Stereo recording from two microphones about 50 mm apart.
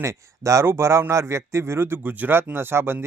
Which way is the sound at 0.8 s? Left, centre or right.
Right.